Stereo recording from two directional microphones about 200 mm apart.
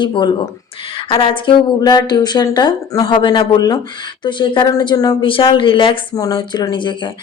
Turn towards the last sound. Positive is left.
turn(degrees=25)  # may be behind; listen again after turning